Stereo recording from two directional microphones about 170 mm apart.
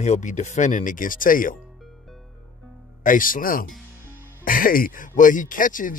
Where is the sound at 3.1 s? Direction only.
50° left (ahead or behind).